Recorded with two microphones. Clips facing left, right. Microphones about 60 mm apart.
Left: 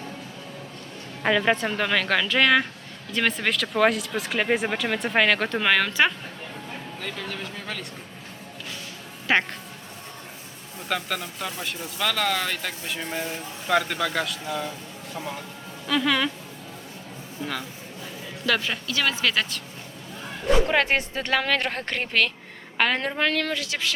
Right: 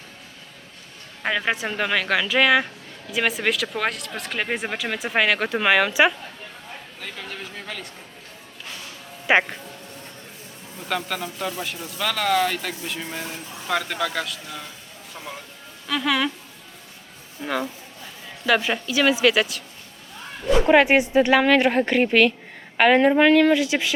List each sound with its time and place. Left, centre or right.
1.2 s a man's voice: centre
9.2 s speech: centre
10.8 s a man's voice: centre
14.4 s speech: centre
15.9 s a man's voice: centre
17.4 s speech: centre
20.7 s speech: centre